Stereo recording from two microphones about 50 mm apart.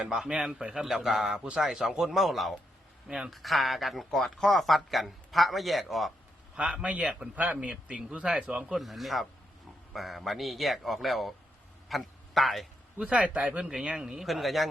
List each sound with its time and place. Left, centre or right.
0.0 s a man's voice: centre
2.1 s speech: centre
6.6 s a man's voice: centre
8.8 s a man's voice: centre
13.1 s a man's voice: right
13.7 s a man's voice: centre
14.3 s speech: centre